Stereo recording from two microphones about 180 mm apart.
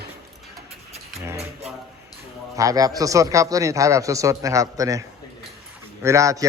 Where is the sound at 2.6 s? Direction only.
20° right (ahead or behind).